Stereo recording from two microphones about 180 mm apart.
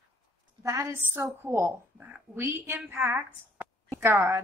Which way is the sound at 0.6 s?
15° right (ahead or behind).